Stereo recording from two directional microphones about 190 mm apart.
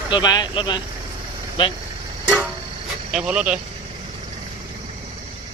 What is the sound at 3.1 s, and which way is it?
Speech, 5° right (ahead or behind).